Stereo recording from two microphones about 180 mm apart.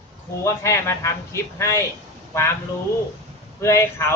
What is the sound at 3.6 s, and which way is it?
Speech, 15° left (ahead or behind).